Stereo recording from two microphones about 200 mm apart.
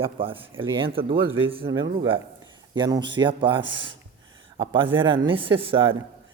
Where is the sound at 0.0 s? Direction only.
25° right (ahead or behind).